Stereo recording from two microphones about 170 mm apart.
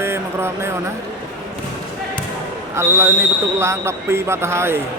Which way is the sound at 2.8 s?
15° right (ahead or behind).